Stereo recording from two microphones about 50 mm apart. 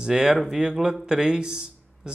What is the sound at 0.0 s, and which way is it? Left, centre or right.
Speech, centre.